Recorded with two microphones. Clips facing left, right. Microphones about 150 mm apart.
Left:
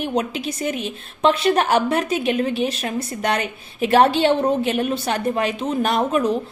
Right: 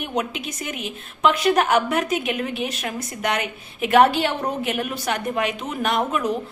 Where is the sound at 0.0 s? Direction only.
30° left (ahead or behind).